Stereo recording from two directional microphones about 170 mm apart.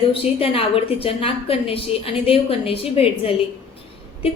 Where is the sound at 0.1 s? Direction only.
35° left (ahead or behind).